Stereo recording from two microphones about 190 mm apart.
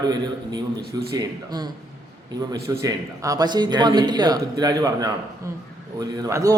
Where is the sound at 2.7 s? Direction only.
15° right (ahead or behind).